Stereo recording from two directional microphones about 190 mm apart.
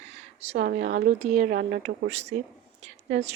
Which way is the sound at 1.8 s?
35° right (ahead or behind).